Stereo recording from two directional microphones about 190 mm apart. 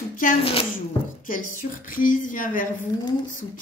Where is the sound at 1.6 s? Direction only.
45° left (ahead or behind).